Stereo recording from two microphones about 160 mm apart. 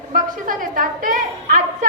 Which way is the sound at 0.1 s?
55° right (ahead or behind).